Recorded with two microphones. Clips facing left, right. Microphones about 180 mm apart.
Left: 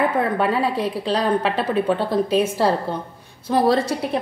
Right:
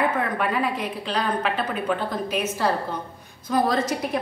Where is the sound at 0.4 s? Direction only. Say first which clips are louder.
Left 4 dB; 30° left (ahead or behind).